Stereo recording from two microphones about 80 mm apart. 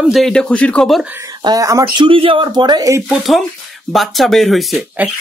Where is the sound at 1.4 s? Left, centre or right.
Right.